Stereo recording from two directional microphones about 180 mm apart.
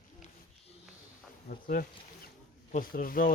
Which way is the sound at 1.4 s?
50° left (ahead or behind).